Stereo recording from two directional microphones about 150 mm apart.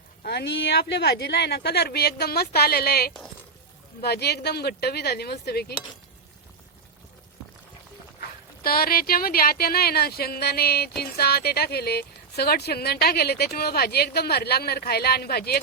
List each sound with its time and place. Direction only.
0.2 s speech: 90° left
8.6 s speech: 80° left